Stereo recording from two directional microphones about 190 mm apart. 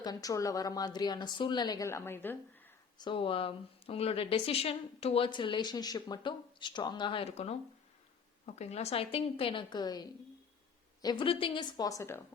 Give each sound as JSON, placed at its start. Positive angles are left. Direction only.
{"t": 0.0, "sound": "speech", "side_deg": 20}
{"t": 3.0, "sound": "speech", "side_deg": 25}